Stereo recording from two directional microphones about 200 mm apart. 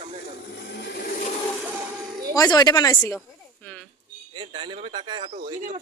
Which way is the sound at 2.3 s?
20° left (ahead or behind).